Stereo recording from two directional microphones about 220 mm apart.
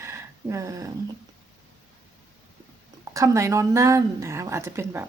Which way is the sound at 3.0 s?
15° right (ahead or behind).